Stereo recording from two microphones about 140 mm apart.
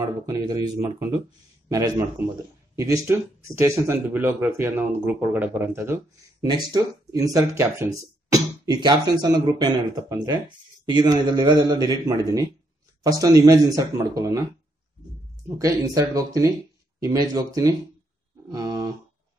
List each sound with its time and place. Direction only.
0.0 s speech: 25° right (ahead or behind)
6.4 s speech: 30° right (ahead or behind)
15.4 s speech: 25° right (ahead or behind)
18.5 s a sound: 25° right (ahead or behind)